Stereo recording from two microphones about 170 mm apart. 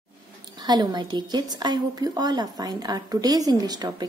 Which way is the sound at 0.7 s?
25° right (ahead or behind).